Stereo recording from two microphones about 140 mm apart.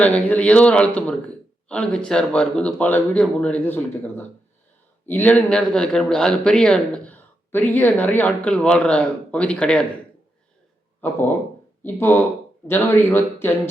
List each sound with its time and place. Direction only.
0.0 s speech: 10° left (ahead or behind)
11.0 s speech: 15° left (ahead or behind)